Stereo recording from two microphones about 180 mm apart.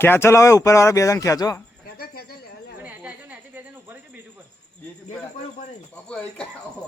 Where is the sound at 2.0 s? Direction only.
55° left (ahead or behind).